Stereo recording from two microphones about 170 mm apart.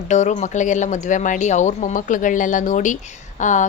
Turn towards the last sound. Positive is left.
turn(degrees=45)  # may be behind; listen again after turning